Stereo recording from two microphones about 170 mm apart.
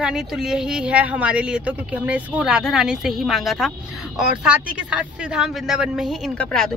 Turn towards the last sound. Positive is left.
turn(degrees=5)  # may be behind; listen again after turning